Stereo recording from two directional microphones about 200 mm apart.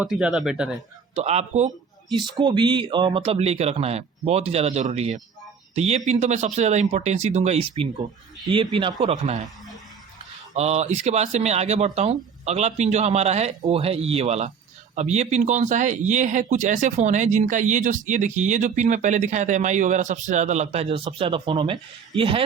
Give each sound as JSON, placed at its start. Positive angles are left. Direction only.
{"t": 0.0, "sound": "speech", "side_deg": -5}
{"t": 1.1, "sound": "speech", "side_deg": -35}
{"t": 2.0, "sound": "speech", "side_deg": -20}
{"t": 10.5, "sound": "speech", "side_deg": -35}